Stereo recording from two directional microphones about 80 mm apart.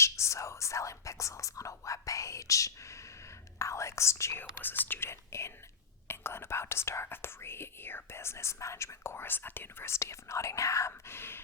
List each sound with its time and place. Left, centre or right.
0.0 s whispering: left
4.6 s whispering: left
6.1 s speech: left